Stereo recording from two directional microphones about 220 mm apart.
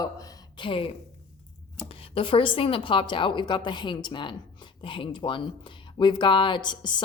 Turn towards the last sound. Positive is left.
turn(degrees=20)  # may be behind; listen again after turning